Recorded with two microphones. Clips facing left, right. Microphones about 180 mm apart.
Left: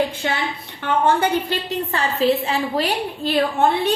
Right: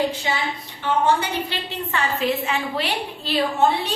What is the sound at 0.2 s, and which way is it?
A woman's voice, 55° left (ahead or behind).